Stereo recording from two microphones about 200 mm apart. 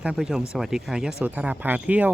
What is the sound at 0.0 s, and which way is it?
Speech, 5° right (ahead or behind).